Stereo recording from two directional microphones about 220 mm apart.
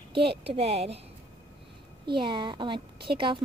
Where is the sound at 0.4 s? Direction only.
25° right (ahead or behind).